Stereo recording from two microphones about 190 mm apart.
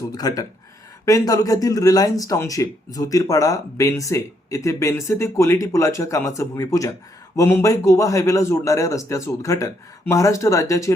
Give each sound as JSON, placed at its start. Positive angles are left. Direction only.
{"t": 0.1, "sound": "speech", "side_deg": 20}